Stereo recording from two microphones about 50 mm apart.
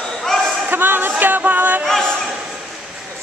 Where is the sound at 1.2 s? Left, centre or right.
Right.